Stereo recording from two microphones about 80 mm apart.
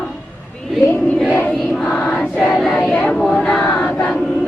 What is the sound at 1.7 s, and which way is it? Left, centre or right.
Choir, centre.